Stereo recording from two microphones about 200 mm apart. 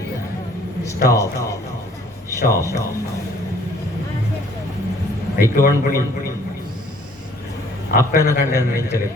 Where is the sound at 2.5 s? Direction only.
15° left (ahead or behind).